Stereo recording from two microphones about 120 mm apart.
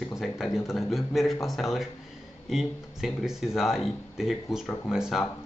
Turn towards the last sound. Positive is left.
turn(degrees=-5)  # may be behind; listen again after turning